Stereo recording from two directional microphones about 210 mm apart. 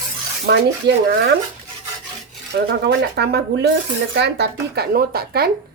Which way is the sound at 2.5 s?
50° right (ahead or behind).